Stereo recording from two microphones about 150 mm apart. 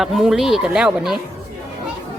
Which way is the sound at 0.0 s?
Centre (ahead or behind).